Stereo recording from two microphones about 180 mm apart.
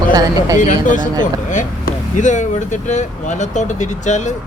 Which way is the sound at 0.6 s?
45° left (ahead or behind).